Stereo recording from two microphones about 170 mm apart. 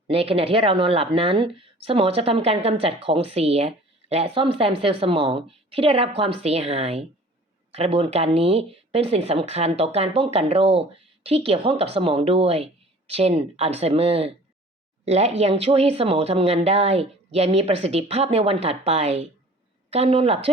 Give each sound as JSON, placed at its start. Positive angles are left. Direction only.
{"t": 0.1, "sound": "a woman's voice", "side_deg": -35}